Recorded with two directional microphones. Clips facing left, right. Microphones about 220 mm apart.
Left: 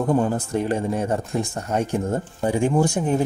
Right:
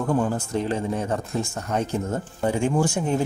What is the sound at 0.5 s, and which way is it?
Speech, 10° left (ahead or behind).